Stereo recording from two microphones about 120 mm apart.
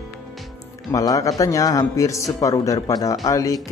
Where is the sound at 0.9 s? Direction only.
30° left (ahead or behind).